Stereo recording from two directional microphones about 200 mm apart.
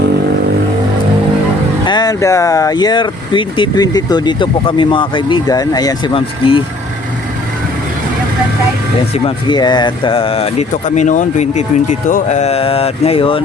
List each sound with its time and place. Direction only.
1.8 s speech: 20° left (ahead or behind)
9.1 s speech: 25° left (ahead or behind)